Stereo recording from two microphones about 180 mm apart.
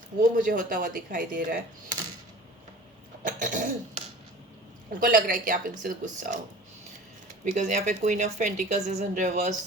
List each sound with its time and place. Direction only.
0.2 s speech: 50° right (ahead or behind)
3.2 s cough: 45° right (ahead or behind)
4.9 s speech: 50° right (ahead or behind)
7.5 s speech: 45° right (ahead or behind)